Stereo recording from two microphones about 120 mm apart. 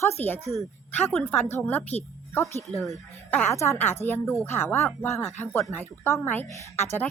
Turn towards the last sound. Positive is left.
turn(degrees=20)  # may be behind; listen again after turning